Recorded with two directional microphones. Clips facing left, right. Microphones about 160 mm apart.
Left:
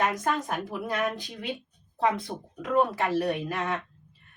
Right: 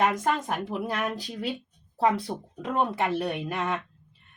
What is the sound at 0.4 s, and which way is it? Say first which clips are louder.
A woman's voice: right 2 dB; 30° right (ahead or behind).